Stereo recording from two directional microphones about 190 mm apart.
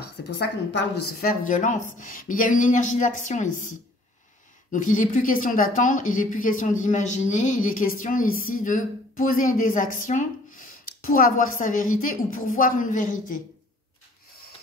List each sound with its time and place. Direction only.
0.4 s a woman's voice: 60° left (ahead or behind)
1.5 s speech: 40° left (ahead or behind)